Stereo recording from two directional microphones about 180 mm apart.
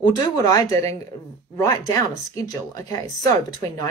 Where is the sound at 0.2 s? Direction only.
20° left (ahead or behind).